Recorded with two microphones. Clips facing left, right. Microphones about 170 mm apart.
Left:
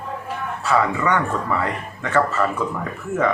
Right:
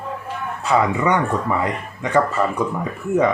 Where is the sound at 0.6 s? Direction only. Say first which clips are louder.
Right 2 dB; 20° right (ahead or behind).